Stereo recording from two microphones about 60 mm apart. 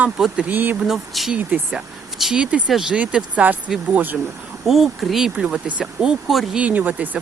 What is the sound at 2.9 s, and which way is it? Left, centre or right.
Speech, right.